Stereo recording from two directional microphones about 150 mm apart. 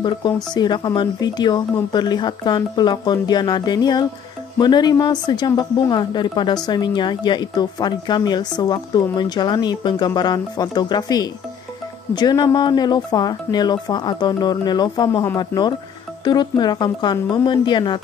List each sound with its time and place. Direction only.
0.2 s speech: 30° left (ahead or behind)